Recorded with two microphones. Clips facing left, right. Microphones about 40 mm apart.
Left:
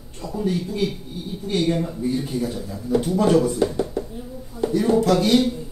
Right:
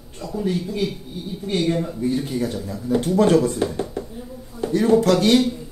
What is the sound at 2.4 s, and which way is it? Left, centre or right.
Speech, right.